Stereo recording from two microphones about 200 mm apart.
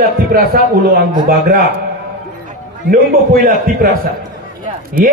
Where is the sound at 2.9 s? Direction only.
45° right (ahead or behind).